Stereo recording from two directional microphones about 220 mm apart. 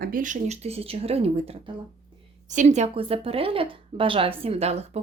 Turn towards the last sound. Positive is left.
turn(degrees=-30)  # may be behind; listen again after turning